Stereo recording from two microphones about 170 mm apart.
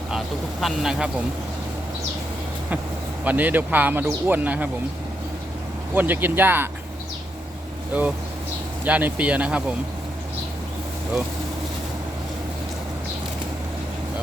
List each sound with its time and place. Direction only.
0.6 s speech: 5° right (ahead or behind)
3.2 s speech: 10° right (ahead or behind)
5.9 s speech: 10° right (ahead or behind)
7.9 s speech: 5° right (ahead or behind)